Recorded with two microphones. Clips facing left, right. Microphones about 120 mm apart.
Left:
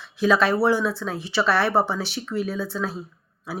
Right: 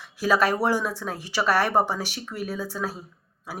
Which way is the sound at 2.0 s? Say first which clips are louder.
Left 3 dB; 45° right (ahead or behind).